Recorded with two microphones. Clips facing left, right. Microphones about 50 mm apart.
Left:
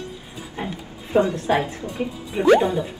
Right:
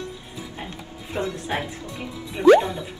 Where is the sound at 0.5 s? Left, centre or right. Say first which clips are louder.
Left 5 dB; left.